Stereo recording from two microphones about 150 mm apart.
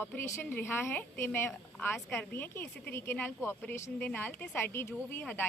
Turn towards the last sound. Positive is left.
turn(degrees=10)  # may be behind; listen again after turning